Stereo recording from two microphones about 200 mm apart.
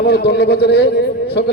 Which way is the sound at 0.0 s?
55° left (ahead or behind).